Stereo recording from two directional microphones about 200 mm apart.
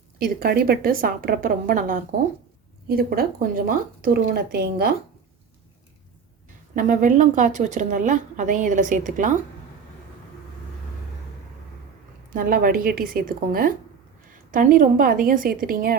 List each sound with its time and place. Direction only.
0.3 s speech: 50° right (ahead or behind)
6.7 s a woman's voice: 40° right (ahead or behind)
12.3 s speech: 45° right (ahead or behind)